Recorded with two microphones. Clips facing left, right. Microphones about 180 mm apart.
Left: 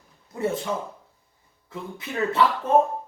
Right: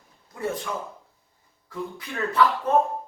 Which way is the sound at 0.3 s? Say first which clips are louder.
Left 3 dB; 25° left (ahead or behind).